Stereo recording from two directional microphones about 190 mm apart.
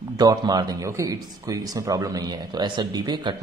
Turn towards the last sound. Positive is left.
turn(degrees=-25)  # may be behind; listen again after turning